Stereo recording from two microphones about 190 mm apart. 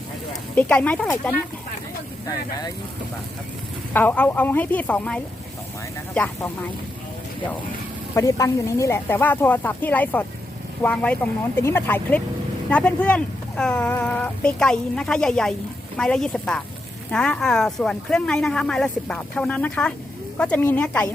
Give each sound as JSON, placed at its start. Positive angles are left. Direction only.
{"t": 0.5, "sound": "speech", "side_deg": 5}
{"t": 2.2, "sound": "speech", "side_deg": 20}
{"t": 3.9, "sound": "speech", "side_deg": 10}
{"t": 8.1, "sound": "speech", "side_deg": 15}